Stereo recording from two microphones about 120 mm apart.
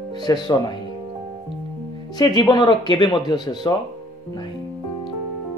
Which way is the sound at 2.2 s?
40° left (ahead or behind).